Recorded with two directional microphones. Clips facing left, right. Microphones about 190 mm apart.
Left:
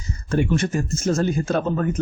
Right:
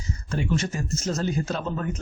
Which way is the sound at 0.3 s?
60° left (ahead or behind).